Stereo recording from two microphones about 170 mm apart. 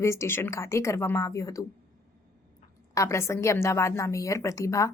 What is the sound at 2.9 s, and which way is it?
A woman's voice, 15° left (ahead or behind).